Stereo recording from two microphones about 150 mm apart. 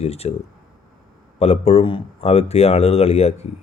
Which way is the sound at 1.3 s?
40° left (ahead or behind).